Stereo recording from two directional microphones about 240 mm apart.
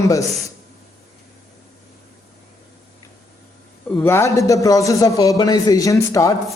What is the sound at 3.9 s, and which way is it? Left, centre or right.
A man's voice, centre.